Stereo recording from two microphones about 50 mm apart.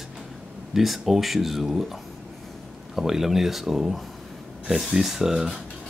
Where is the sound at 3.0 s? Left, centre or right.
Centre.